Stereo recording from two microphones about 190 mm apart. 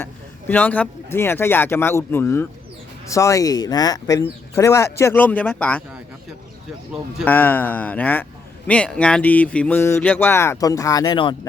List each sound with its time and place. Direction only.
0.0 s a man's voice: 10° left (ahead or behind)
7.3 s a man's voice: 10° left (ahead or behind); by 11.3 s 25° left (ahead or behind)